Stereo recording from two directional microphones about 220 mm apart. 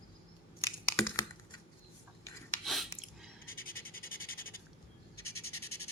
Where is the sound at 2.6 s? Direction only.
Centre (ahead or behind).